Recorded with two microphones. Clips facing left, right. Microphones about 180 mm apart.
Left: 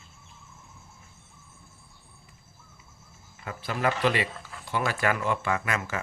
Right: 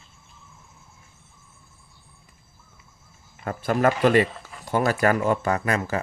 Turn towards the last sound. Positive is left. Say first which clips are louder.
# right 5 dB
turn(degrees=-35)  # may be behind; listen again after turning